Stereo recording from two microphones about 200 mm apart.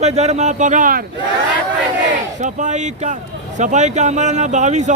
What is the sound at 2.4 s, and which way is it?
Speech, 35° right (ahead or behind).